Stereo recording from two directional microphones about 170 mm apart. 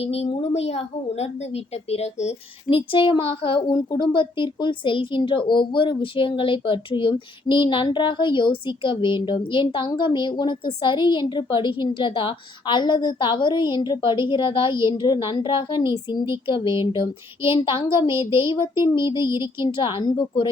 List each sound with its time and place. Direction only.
0.0 s a woman's voice: 35° left (ahead or behind)